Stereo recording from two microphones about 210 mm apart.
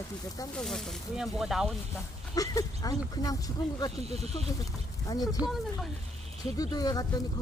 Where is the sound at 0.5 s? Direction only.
Centre (ahead or behind).